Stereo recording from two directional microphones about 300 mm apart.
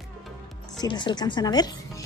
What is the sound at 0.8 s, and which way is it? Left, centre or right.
Speech, centre.